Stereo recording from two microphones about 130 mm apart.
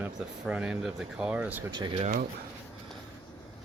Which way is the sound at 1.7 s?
35° right (ahead or behind).